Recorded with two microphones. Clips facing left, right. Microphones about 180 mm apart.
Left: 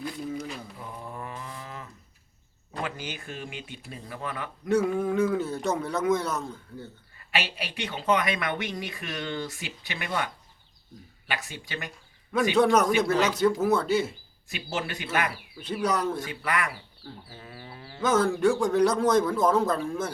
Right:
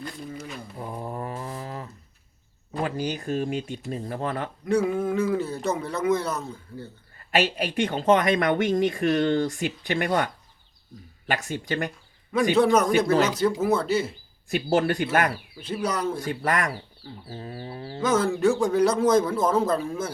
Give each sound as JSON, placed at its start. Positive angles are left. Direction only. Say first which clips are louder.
{"t": 0.0, "sound": "a sound", "louder": "left 3 dB", "side_deg": 5}
{"t": 0.8, "sound": "mantra", "louder": "right 6 dB", "side_deg": -40}
{"t": 2.8, "sound": "speech", "louder": "right 8 dB", "side_deg": -35}
{"t": 4.6, "sound": "a man's voice", "louder": "right 1 dB", "side_deg": 0}
{"t": 7.3, "sound": "speech", "louder": "right 8 dB", "side_deg": -45}
{"t": 12.5, "sound": "a man's voice", "louder": "right 1 dB", "side_deg": 0}
{"t": 12.9, "sound": "speech", "louder": "right 3 dB", "side_deg": -45}
{"t": 13.4, "sound": "a man's voice", "louder": "even", "side_deg": 0}
{"t": 14.5, "sound": "speech", "louder": "right 10 dB", "side_deg": -45}
{"t": 15.6, "sound": "a man's voice", "louder": "even", "side_deg": 0}
{"t": 16.3, "sound": "speech", "louder": "right 4 dB", "side_deg": -45}
{"t": 18.0, "sound": "a man's voice", "louder": "right 1 dB", "side_deg": 0}